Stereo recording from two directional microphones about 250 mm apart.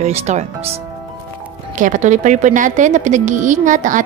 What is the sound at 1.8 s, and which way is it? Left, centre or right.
A woman's voice, right.